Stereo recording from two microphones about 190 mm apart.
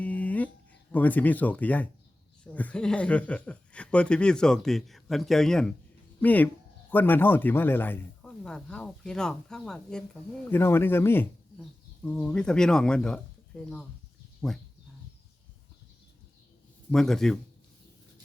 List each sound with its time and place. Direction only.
0.0 s a sound: 10° left (ahead or behind)
2.4 s speech: 5° left (ahead or behind)
16.9 s speech: centre (ahead or behind)